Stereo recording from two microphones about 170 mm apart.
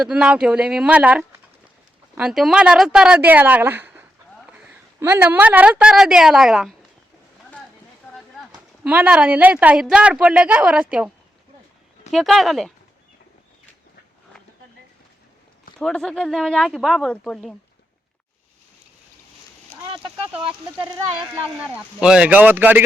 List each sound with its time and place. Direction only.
0.0 s a woman's voice: 5° right (ahead or behind)
8.8 s a woman's voice: 5° right (ahead or behind)
12.1 s speech: centre (ahead or behind)
15.8 s speech: 5° left (ahead or behind)
19.9 s a sound: 30° right (ahead or behind)
21.6 s a woman's voice: 5° right (ahead or behind)